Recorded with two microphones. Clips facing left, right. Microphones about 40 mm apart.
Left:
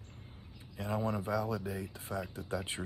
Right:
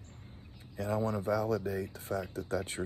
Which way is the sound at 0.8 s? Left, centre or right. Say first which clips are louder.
Right 2 dB; left.